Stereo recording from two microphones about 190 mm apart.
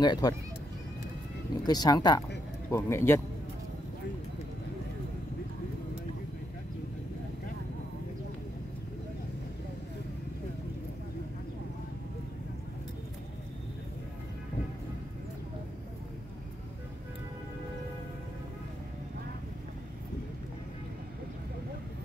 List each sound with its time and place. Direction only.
0.0 s speech: 20° left (ahead or behind)
1.7 s a man's voice: 20° left (ahead or behind)